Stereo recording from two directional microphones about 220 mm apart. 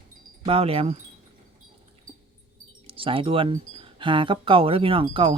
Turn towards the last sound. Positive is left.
turn(degrees=-25)  # may be behind; listen again after turning